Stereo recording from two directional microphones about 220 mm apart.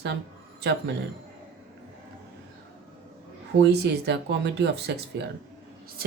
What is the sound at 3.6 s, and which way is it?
Speech, 50° right (ahead or behind).